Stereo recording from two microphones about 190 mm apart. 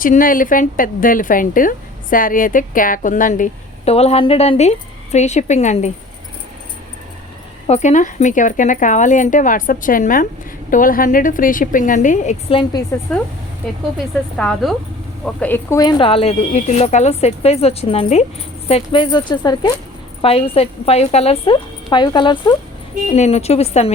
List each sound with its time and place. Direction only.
0.0 s a woman's voice: 45° left (ahead or behind)
7.7 s a woman's voice: 40° left (ahead or behind)
13.1 s speech: 5° left (ahead or behind)
14.3 s speech: centre (ahead or behind)
15.8 s a woman's voice: 25° left (ahead or behind)
23.1 s speech: 35° left (ahead or behind)